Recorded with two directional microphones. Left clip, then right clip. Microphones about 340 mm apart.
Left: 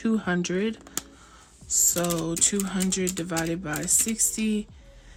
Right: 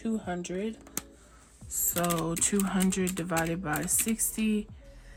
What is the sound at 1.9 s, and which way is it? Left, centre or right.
Speech, centre.